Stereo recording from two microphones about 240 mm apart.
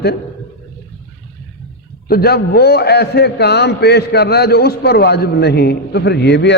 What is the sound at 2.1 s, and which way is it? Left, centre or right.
A man's voice, left.